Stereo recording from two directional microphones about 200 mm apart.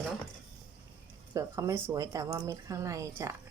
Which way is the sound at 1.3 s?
15° right (ahead or behind).